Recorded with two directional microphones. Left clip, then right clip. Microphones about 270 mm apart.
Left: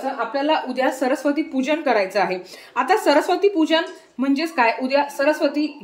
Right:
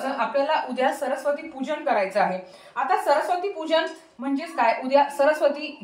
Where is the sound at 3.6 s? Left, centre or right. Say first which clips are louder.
Left 4 dB; left.